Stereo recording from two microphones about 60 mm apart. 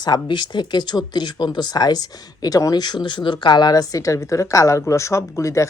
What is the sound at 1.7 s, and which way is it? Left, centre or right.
Speech, left.